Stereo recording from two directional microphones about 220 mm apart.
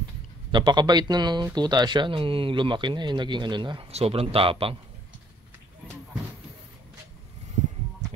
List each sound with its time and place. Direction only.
0.5 s speech: 20° right (ahead or behind)